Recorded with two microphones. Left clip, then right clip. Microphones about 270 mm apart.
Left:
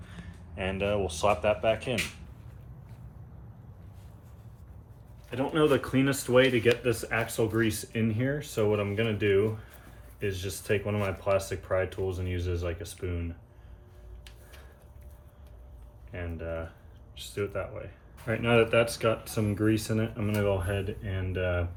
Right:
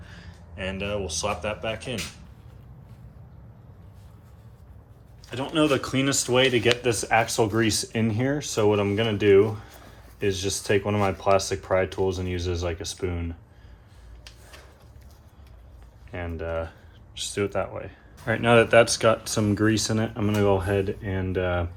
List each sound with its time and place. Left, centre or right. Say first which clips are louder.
0.5 s speech: even; centre
5.3 s speech: right 2 dB; centre
6.8 s speech: right 7 dB; centre
16.1 s typing: right 6 dB; right
17.2 s speech: right 7 dB; right